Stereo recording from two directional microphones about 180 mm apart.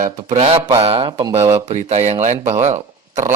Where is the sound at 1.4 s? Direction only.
15° right (ahead or behind).